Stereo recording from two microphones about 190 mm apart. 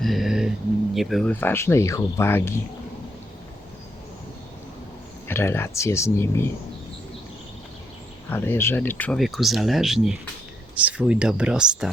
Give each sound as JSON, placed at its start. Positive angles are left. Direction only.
{"t": 0.0, "sound": "music", "side_deg": 0}
{"t": 0.9, "sound": "speech", "side_deg": 0}
{"t": 5.3, "sound": "speech", "side_deg": 10}
{"t": 8.3, "sound": "speech", "side_deg": 10}